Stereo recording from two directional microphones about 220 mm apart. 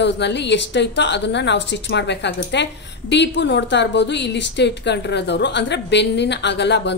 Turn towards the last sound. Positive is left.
turn(degrees=50)  # may be behind; listen again after turning